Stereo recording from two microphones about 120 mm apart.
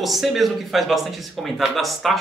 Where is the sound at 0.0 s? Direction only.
Centre (ahead or behind).